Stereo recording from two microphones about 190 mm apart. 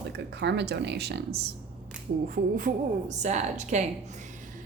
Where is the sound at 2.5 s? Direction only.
40° right (ahead or behind).